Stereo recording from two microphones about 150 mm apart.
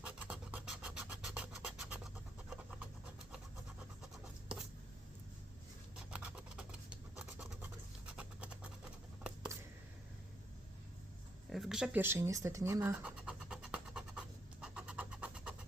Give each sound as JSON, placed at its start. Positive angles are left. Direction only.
{"t": 0.0, "sound": "scratch", "side_deg": -10}
{"t": 6.1, "sound": "scratch", "side_deg": -10}
{"t": 8.0, "sound": "a sound", "side_deg": -5}
{"t": 11.4, "sound": "speech", "side_deg": 0}
{"t": 13.0, "sound": "scratch", "side_deg": -10}